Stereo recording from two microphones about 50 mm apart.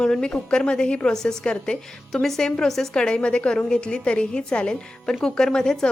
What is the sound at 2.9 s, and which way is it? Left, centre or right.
A woman's voice, centre.